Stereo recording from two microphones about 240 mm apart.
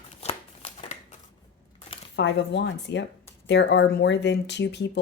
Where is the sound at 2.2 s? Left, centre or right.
Left.